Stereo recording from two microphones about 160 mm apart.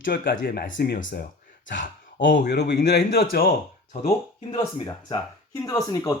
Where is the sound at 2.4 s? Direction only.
90° left.